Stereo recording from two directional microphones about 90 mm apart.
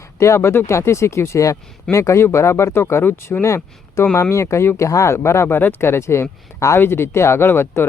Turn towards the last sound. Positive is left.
turn(degrees=25)  # may be behind; listen again after turning